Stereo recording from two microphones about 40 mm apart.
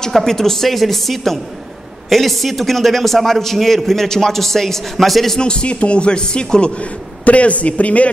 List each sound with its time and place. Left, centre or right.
0.1 s a man's voice: centre
5.4 s a man's voice: left
7.2 s speech: left